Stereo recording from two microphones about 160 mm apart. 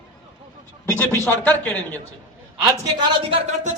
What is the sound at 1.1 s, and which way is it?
Speech, 15° left (ahead or behind).